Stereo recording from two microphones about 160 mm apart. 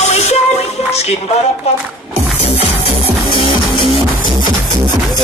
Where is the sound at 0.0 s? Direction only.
45° left (ahead or behind).